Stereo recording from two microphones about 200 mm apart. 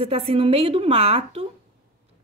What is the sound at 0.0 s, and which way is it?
A woman's voice, 30° right (ahead or behind).